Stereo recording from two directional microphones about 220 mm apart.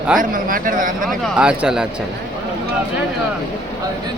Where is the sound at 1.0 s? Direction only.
Centre (ahead or behind).